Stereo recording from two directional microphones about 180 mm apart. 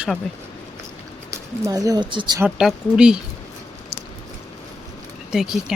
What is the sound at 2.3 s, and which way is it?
Speech, 10° right (ahead or behind).